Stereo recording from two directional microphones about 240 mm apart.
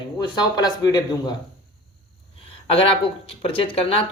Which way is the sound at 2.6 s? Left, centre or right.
Left.